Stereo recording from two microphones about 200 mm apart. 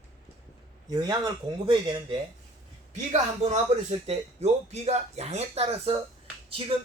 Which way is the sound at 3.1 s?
35° right (ahead or behind).